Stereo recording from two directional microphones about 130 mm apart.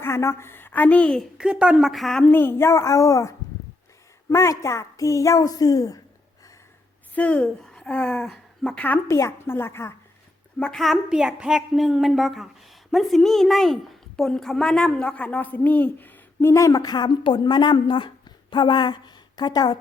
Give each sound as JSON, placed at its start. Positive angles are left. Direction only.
{"t": 0.0, "sound": "a woman's voice", "side_deg": 20}
{"t": 1.4, "sound": "a woman's voice", "side_deg": -5}
{"t": 2.2, "sound": "a woman's voice", "side_deg": 15}
{"t": 7.2, "sound": "a woman's voice", "side_deg": 10}
{"t": 10.6, "sound": "a woman's voice", "side_deg": 0}